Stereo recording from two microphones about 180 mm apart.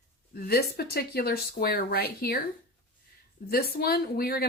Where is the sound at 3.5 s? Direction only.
55° left (ahead or behind).